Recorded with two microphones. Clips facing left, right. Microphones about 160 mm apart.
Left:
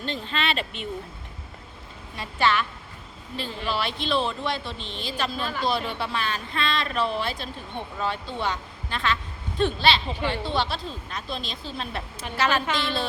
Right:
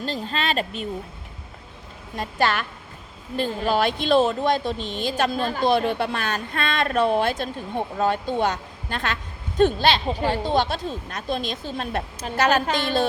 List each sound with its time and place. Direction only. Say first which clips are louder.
0.0 s speech: right 2 dB; 40° right (ahead or behind)
2.1 s speech: right 1 dB; 45° right (ahead or behind)